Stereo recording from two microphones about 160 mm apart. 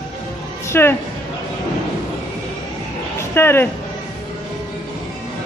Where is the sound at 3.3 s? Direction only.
15° left (ahead or behind).